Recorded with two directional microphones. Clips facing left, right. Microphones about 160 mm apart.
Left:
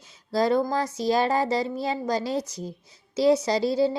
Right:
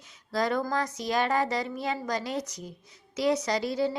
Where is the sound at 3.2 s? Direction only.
30° left (ahead or behind).